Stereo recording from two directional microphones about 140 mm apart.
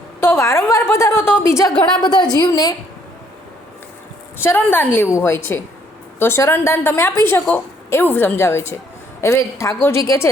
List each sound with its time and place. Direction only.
0.2 s a woman's voice: 20° left (ahead or behind)
2.0 s a woman's voice: 30° left (ahead or behind)
4.4 s a woman's voice: 15° left (ahead or behind)